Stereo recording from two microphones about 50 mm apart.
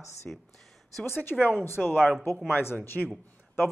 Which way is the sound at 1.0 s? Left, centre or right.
Left.